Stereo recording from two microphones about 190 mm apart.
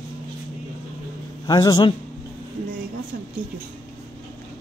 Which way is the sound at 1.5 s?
20° left (ahead or behind).